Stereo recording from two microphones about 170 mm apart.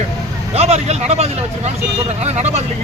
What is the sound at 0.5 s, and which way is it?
Speech, 40° right (ahead or behind).